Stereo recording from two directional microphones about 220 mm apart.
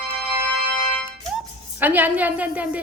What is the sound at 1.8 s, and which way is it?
Speech, 10° right (ahead or behind).